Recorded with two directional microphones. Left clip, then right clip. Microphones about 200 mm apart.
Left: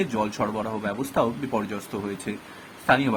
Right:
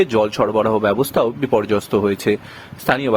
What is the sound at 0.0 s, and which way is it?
Speech, 45° right (ahead or behind).